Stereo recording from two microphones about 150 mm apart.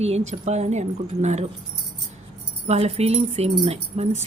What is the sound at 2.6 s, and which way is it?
Speech, 45° right (ahead or behind).